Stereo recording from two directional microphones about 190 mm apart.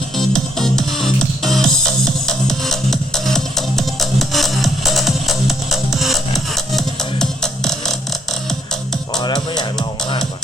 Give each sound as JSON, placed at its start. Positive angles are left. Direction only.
{"t": 0.2, "sound": "music", "side_deg": 0}
{"t": 9.2, "sound": "music", "side_deg": 25}